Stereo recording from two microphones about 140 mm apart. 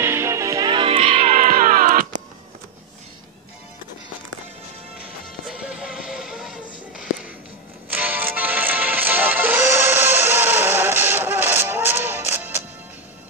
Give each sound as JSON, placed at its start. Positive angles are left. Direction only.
{"t": 0.0, "sound": "music", "side_deg": -20}
{"t": 1.3, "sound": "music", "side_deg": -85}
{"t": 5.4, "sound": "music", "side_deg": -5}
{"t": 7.9, "sound": "music", "side_deg": -10}